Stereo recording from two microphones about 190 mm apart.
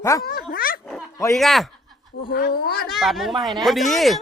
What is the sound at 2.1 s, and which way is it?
Speech, 55° left (ahead or behind).